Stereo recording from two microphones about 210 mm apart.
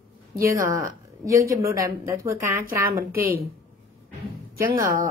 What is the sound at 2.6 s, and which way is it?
Speech, 45° right (ahead or behind).